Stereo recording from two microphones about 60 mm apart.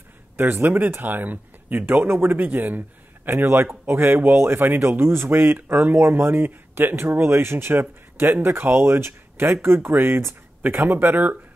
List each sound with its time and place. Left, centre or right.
0.4 s speech: right
3.3 s speech: right